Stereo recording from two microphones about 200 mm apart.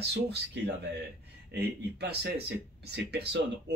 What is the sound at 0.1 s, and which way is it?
Speech, 55° right (ahead or behind).